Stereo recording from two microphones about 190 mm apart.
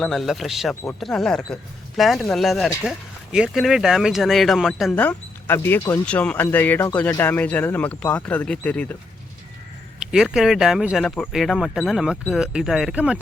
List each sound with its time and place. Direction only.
0.0 s speech: centre (ahead or behind)
10.0 s speech: 5° right (ahead or behind)